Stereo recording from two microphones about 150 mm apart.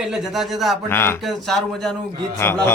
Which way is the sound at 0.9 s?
15° left (ahead or behind).